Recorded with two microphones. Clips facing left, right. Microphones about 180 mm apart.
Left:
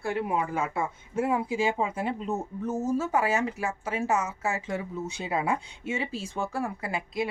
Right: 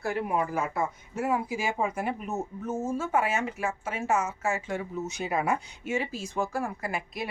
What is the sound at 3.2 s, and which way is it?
Speech, 35° left (ahead or behind).